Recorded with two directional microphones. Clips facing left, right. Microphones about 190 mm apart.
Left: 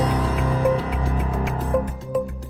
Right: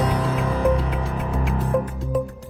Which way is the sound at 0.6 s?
Centre (ahead or behind).